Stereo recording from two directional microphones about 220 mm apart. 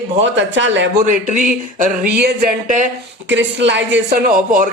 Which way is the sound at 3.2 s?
55° right (ahead or behind).